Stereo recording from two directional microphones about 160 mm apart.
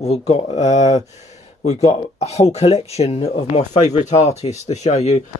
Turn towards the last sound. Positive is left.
turn(degrees=45)  # may be behind; listen again after turning